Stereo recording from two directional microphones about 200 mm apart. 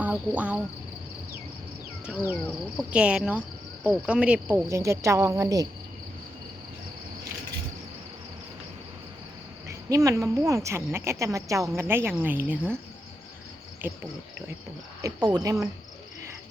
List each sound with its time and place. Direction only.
0.0 s speech: 5° right (ahead or behind)
2.0 s a woman's voice: 5° right (ahead or behind)
9.6 s a woman's voice: 15° right (ahead or behind)
13.8 s a woman's voice: 10° right (ahead or behind)
15.0 s a woman's voice: 20° right (ahead or behind)